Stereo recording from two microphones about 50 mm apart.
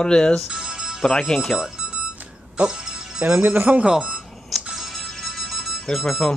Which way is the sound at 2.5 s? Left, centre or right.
Centre.